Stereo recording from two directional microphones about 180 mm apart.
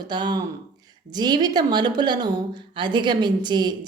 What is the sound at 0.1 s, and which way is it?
A woman's voice, 25° right (ahead or behind).